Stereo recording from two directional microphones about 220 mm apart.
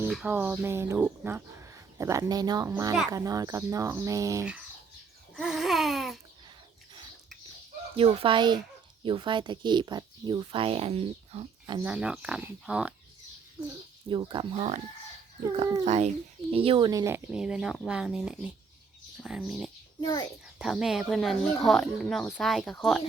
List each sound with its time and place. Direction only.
0.1 s speech: 5° right (ahead or behind)
5.4 s babbling: centre (ahead or behind)
7.9 s speech: 25° right (ahead or behind)
11.8 s speech: 5° right (ahead or behind)
14.1 s speech: 20° right (ahead or behind)
15.8 s speech: 30° right (ahead or behind); by 19.7 s centre (ahead or behind)
20.0 s a child's voice: 15° left (ahead or behind)
20.6 s speech: centre (ahead or behind)